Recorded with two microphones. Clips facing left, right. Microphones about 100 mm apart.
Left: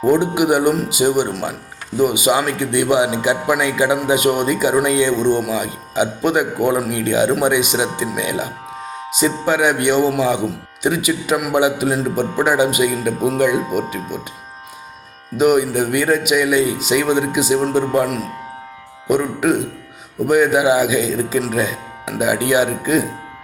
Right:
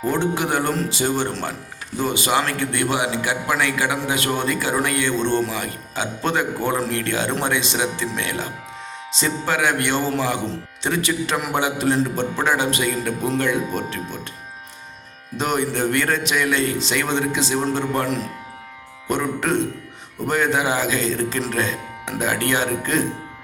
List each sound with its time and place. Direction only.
0.0 s a man's voice: 15° left (ahead or behind)
15.4 s a man's voice: 10° left (ahead or behind)